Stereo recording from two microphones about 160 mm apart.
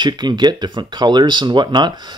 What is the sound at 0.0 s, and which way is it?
Speech, 25° right (ahead or behind).